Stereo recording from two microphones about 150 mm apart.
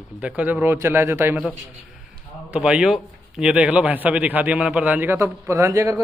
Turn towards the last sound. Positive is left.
turn(degrees=-20)  # may be behind; listen again after turning